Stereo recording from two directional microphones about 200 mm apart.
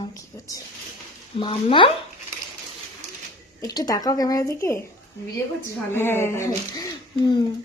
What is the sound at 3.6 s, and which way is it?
Speech, 20° left (ahead or behind).